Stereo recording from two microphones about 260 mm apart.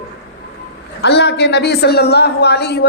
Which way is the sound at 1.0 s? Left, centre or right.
Left.